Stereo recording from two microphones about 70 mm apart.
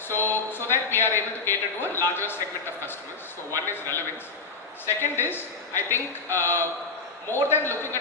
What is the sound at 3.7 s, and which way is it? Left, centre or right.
A man's voice, left.